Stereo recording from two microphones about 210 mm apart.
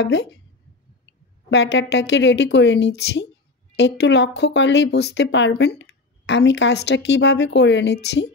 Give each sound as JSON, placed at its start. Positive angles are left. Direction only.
{"t": 0.0, "sound": "speech", "side_deg": 55}
{"t": 1.5, "sound": "speech", "side_deg": 55}